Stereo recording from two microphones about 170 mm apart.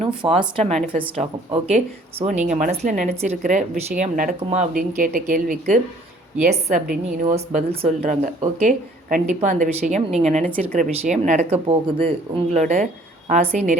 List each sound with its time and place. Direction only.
0.2 s speech: 30° right (ahead or behind)
8.0 s speech: 50° right (ahead or behind)
10.7 s speech: 55° right (ahead or behind)